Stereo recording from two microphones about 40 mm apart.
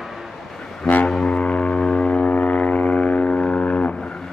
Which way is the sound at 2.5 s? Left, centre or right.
Left.